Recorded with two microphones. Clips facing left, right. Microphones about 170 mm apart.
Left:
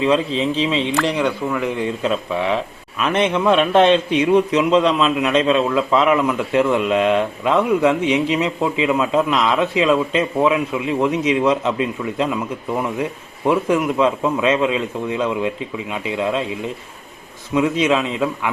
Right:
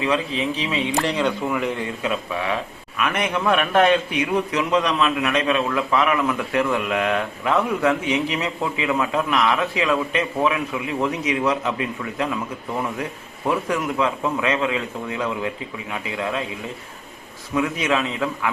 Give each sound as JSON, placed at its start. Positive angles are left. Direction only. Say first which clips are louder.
{"t": 0.0, "sound": "a man's voice", "louder": "left 5 dB", "side_deg": 30}
{"t": 2.0, "sound": "a man's voice", "louder": "left 4 dB", "side_deg": 25}
{"t": 13.5, "sound": "a man's voice", "louder": "left 6 dB", "side_deg": 20}
{"t": 17.5, "sound": "a man's voice", "louder": "left 5 dB", "side_deg": 20}